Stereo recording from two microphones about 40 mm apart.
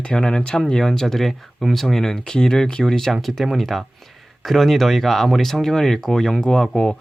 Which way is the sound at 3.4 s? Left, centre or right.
Centre.